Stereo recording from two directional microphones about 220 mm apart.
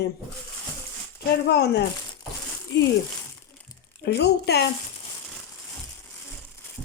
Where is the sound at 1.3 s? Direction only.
45° left (ahead or behind).